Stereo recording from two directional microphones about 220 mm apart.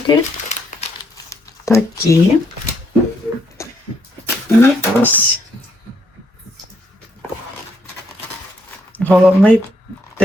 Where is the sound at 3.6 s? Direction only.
15° left (ahead or behind).